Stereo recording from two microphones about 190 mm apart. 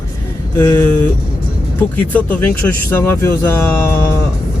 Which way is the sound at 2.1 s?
10° left (ahead or behind).